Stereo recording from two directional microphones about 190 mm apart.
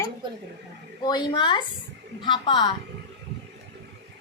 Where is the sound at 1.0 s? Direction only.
25° left (ahead or behind).